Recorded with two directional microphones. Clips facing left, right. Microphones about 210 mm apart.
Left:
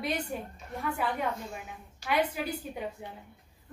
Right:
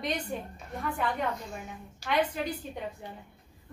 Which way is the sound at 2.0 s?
10° left (ahead or behind).